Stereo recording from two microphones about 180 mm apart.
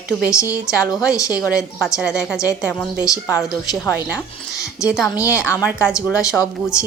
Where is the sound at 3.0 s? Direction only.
15° left (ahead or behind).